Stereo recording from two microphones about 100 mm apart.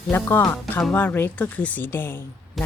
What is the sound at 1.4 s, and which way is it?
Music, 15° left (ahead or behind).